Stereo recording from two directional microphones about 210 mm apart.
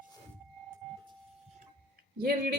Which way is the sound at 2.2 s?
45° right (ahead or behind).